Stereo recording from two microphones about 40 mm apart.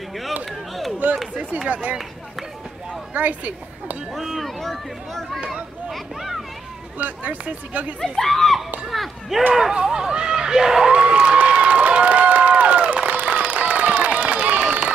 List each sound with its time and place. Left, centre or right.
0.9 s chop: right
1.7 s speech: right
3.2 s speech: right
4.2 s speech: centre
4.6 s speech: centre
5.5 s a sound: centre
7.0 s speech: right
8.2 s speech: centre
9.6 s speech: centre
10.9 s a sound: right